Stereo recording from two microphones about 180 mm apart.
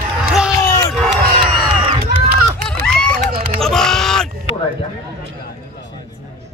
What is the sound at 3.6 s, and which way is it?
Crow, 5° left (ahead or behind).